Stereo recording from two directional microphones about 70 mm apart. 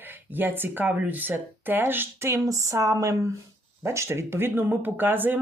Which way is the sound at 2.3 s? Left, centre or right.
Right.